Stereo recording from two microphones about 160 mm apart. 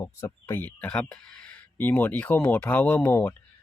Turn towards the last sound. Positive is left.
turn(degrees=15)  # may be behind; listen again after turning